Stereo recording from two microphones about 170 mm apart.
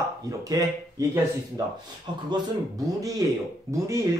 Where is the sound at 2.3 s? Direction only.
20° right (ahead or behind).